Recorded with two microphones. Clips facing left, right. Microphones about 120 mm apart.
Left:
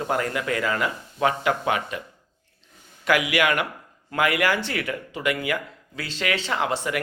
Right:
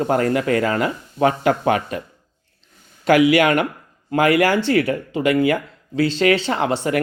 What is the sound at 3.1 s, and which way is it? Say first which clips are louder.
Speech: right 8 dB; 30° right (ahead or behind).